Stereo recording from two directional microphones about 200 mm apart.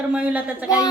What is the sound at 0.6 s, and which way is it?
Speech, 15° left (ahead or behind).